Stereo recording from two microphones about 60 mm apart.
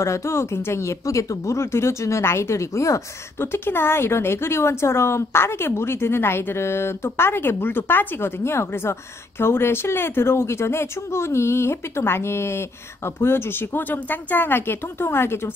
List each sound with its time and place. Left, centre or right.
0.0 s speech: left
3.3 s speech: left